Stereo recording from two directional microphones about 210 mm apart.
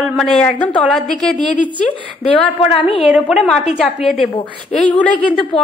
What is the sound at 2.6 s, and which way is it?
Speech, 25° left (ahead or behind).